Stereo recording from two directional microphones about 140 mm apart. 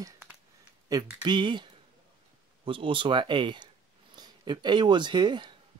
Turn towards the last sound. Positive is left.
turn(degrees=-35)  # may be behind; listen again after turning